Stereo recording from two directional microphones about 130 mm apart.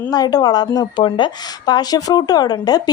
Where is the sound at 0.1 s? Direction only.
30° left (ahead or behind).